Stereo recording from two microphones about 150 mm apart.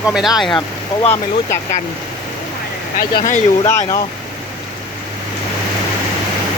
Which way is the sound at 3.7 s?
20° left (ahead or behind).